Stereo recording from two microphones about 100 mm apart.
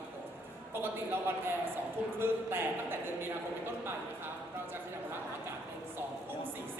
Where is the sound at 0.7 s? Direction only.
20° right (ahead or behind).